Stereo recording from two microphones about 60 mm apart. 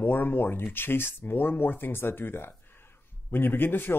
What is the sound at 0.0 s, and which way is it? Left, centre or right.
Speech, left.